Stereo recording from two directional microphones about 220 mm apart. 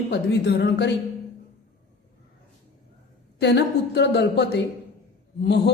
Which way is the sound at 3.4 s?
50° left (ahead or behind).